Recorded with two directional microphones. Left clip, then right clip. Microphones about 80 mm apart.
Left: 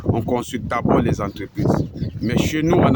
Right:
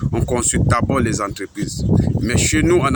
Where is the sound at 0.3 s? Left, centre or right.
Left.